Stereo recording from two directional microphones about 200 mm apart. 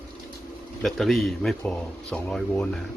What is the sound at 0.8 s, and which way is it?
Speech, centre (ahead or behind).